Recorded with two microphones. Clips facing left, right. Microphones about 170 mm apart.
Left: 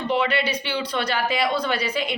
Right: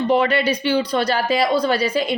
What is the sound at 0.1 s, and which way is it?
A woman's voice, 45° right (ahead or behind).